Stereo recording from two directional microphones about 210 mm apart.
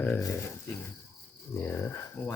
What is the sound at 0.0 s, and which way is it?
Speech, 10° left (ahead or behind).